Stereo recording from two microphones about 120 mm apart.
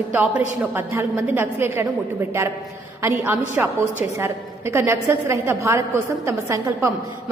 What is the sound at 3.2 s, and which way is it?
A woman's voice, 15° right (ahead or behind).